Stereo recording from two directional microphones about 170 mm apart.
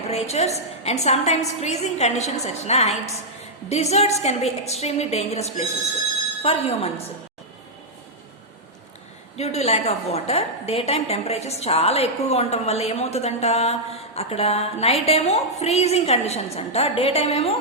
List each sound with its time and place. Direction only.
0.1 s a woman's voice: 40° left (ahead or behind)
9.4 s a woman's voice: 40° left (ahead or behind)